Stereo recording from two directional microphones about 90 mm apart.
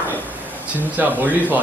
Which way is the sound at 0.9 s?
20° right (ahead or behind).